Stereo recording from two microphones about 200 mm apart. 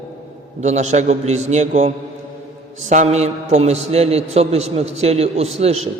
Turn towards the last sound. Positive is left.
turn(degrees=-30)  # may be behind; listen again after turning